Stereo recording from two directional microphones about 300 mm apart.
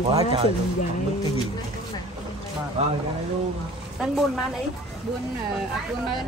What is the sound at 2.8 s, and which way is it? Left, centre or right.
Speech, right.